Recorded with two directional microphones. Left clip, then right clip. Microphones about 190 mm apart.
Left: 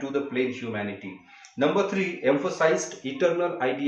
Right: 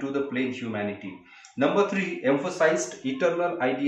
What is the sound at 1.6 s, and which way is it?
Speech, centre (ahead or behind).